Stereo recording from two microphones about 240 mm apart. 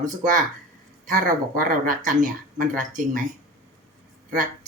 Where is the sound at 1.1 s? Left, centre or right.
Right.